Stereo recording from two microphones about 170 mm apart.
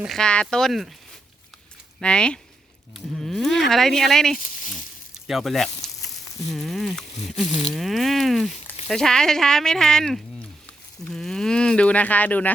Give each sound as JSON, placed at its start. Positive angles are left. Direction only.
{"t": 0.0, "sound": "speech", "side_deg": 0}
{"t": 2.0, "sound": "speech", "side_deg": 5}
{"t": 4.4, "sound": "a sound", "side_deg": 50}
{"t": 5.3, "sound": "speech", "side_deg": 0}
{"t": 7.4, "sound": "speech", "side_deg": 40}
{"t": 7.7, "sound": "speech", "side_deg": 0}